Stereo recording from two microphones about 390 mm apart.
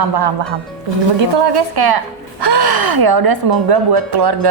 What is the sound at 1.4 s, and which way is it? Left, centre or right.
A woman's voice, right.